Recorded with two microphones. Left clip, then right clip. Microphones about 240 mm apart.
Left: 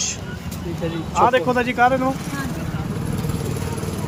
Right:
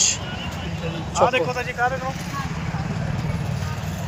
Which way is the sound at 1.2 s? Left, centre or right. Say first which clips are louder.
Left 3 dB; left.